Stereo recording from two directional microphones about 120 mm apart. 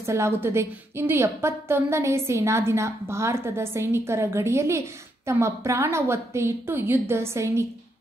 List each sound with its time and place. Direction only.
0.0 s a woman's voice: 25° right (ahead or behind)